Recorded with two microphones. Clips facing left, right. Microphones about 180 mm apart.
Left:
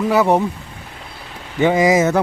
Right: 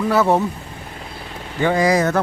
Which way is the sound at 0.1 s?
15° left (ahead or behind).